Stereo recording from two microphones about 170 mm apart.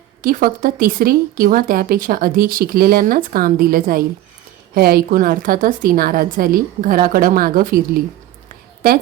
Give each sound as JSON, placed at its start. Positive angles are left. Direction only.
{"t": 0.2, "sound": "speech", "side_deg": -55}